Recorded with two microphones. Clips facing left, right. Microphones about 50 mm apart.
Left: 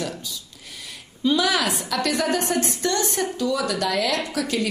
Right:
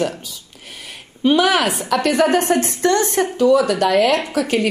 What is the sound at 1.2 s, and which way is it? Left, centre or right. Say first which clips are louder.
A woman's voice: right 6 dB; right.